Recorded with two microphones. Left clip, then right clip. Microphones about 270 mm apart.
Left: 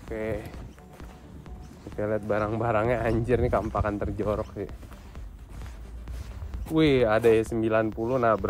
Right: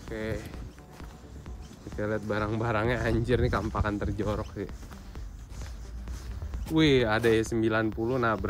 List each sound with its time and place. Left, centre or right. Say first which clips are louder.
0.1 s speech: left 3 dB; centre
2.0 s speech: left 4 dB; centre
6.6 s speech: left 2 dB; centre